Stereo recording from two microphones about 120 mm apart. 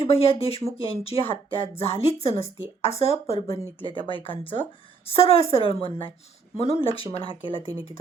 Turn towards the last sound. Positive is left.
turn(degrees=-35)  # may be behind; listen again after turning